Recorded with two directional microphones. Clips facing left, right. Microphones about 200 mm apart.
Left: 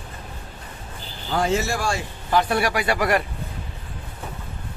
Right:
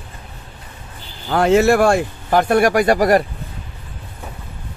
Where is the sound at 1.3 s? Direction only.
65° right (ahead or behind); by 3.2 s 40° right (ahead or behind).